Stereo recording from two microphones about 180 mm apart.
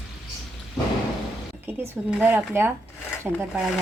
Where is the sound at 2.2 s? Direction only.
10° right (ahead or behind).